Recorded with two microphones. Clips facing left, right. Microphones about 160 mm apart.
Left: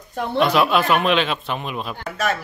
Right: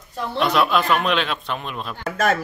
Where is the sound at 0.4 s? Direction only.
Centre (ahead or behind).